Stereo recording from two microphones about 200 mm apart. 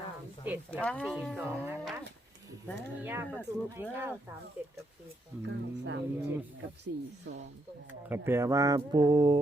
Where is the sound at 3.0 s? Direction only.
10° right (ahead or behind).